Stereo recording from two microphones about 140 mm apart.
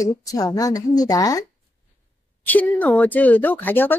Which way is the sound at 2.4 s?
10° left (ahead or behind).